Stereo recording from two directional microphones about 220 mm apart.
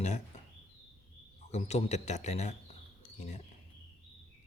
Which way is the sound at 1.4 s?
30° left (ahead or behind).